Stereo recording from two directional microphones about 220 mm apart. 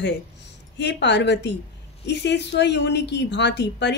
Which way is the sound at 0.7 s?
50° left (ahead or behind).